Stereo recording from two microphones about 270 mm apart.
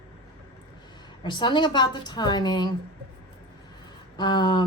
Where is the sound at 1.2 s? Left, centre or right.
Centre.